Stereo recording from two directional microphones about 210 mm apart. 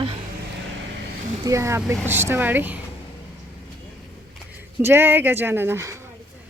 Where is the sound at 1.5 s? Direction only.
15° right (ahead or behind).